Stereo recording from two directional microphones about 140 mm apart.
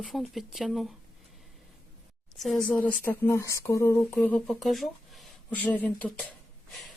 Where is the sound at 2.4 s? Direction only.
5° left (ahead or behind); by 4.0 s 20° left (ahead or behind).